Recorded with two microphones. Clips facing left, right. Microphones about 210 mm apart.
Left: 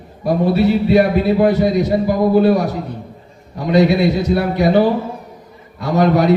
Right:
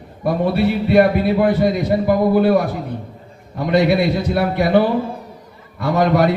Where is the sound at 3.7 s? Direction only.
55° right (ahead or behind).